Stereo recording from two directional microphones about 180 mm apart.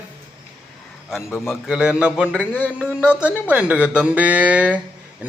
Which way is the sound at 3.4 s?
10° right (ahead or behind).